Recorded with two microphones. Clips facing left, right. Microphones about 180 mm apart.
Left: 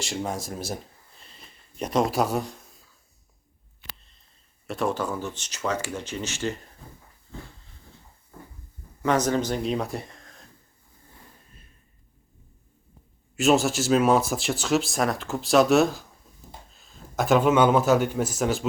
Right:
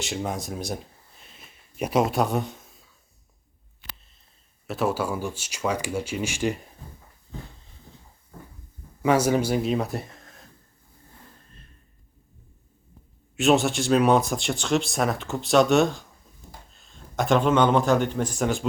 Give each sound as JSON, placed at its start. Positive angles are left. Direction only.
{"t": 0.0, "sound": "speech", "side_deg": 0}
{"t": 1.2, "sound": "a sound", "side_deg": -5}
{"t": 4.6, "sound": "speech", "side_deg": -5}
{"t": 9.0, "sound": "speech", "side_deg": -10}
{"t": 13.3, "sound": "speech", "side_deg": 0}